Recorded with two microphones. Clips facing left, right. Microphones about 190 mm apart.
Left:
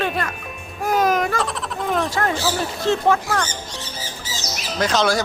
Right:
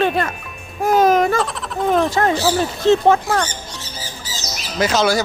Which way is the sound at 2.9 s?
25° right (ahead or behind).